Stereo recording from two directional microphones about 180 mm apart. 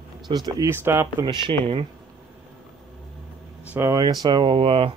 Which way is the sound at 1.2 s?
25° right (ahead or behind).